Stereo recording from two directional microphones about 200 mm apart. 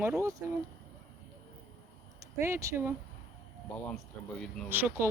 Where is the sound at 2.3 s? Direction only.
15° right (ahead or behind).